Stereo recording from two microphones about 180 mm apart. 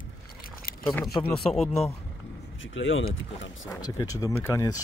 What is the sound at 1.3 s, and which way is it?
Speech, 5° left (ahead or behind).